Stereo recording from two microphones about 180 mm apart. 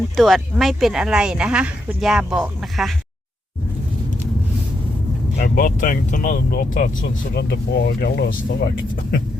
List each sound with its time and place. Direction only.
0.2 s speech: centre (ahead or behind)
5.4 s speech: 50° left (ahead or behind)